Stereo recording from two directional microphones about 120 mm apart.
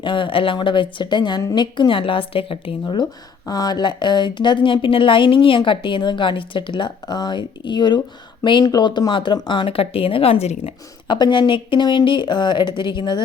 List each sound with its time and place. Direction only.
0.0 s speech: 45° left (ahead or behind)
1.4 s a woman's voice: 25° left (ahead or behind)
1.7 s speech: 45° left (ahead or behind)
2.8 s speech: 35° left (ahead or behind); by 10.8 s 60° left (ahead or behind)
11.1 s speech: 40° left (ahead or behind)